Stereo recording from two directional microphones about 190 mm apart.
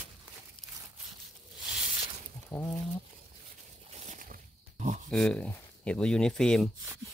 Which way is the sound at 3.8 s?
35° right (ahead or behind).